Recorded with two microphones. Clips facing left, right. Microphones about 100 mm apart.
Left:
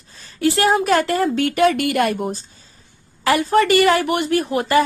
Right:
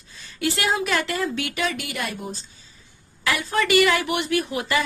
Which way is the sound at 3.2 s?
45° left (ahead or behind).